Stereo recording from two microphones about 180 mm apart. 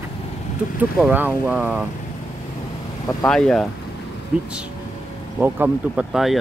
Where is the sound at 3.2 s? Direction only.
5° left (ahead or behind).